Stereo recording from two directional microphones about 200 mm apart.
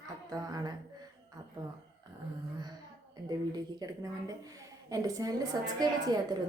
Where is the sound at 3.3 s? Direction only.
20° right (ahead or behind).